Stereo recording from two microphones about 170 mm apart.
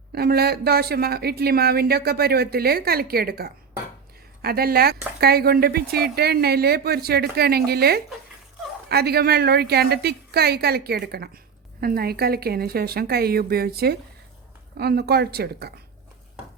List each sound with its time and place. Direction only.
0.1 s a woman's voice: 65° right (ahead or behind)